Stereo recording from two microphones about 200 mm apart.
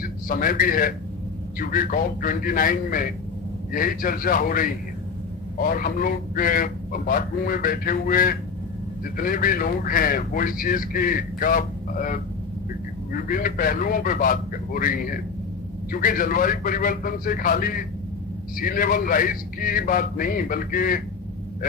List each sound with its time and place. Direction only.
0.0 s a man's voice: 45° left (ahead or behind)
13.2 s speech: 45° left (ahead or behind)